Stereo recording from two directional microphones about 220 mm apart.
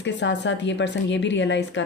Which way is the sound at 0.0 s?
55° left (ahead or behind).